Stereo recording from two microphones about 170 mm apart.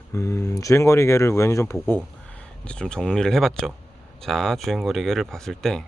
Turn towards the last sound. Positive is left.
turn(degrees=0)  # may be behind; listen again after turning